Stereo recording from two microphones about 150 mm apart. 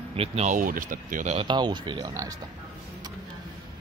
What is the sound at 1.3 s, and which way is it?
Speech, 30° right (ahead or behind).